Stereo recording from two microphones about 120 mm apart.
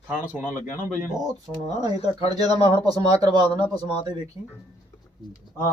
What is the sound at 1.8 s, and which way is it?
A man's voice, 35° right (ahead or behind).